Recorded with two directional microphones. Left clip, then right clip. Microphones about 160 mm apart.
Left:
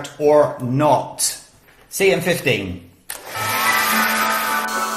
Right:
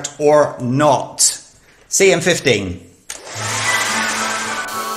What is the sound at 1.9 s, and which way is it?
Speech, 70° right (ahead or behind).